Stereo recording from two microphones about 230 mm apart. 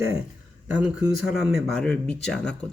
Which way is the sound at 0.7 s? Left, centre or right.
Centre.